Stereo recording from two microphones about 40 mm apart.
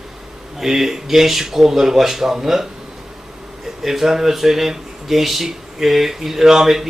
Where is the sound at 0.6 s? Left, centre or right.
Centre.